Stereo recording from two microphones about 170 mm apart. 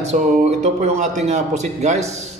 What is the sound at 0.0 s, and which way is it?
Speech, 40° right (ahead or behind).